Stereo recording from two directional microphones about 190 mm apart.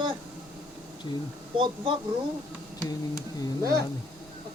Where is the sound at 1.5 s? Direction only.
25° right (ahead or behind).